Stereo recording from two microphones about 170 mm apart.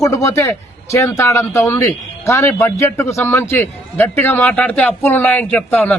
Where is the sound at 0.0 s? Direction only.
20° left (ahead or behind).